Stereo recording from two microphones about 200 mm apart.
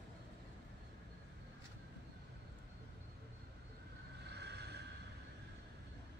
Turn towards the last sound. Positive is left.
turn(degrees=-55)  # may be behind; listen again after turning